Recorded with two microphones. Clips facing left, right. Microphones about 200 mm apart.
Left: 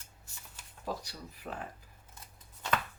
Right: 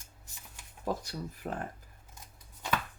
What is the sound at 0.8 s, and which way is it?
Speech, 50° right (ahead or behind).